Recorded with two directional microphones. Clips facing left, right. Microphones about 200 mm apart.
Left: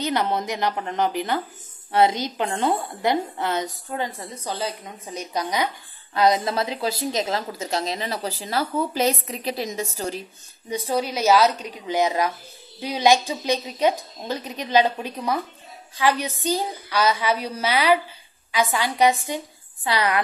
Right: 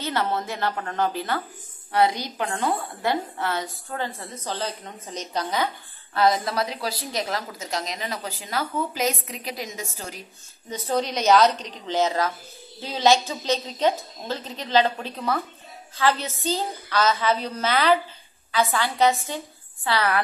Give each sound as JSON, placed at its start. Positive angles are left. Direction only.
{"t": 0.0, "sound": "a woman's voice", "side_deg": 15}
{"t": 10.7, "sound": "a woman's voice", "side_deg": 10}